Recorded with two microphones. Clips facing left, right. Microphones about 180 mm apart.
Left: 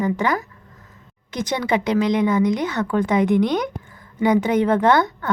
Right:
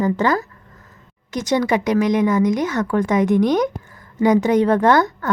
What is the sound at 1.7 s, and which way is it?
Speech, 25° left (ahead or behind).